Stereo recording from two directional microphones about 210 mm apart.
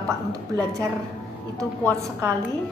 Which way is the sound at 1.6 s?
15° right (ahead or behind).